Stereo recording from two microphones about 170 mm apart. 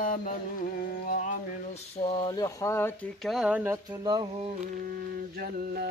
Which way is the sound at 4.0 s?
25° right (ahead or behind).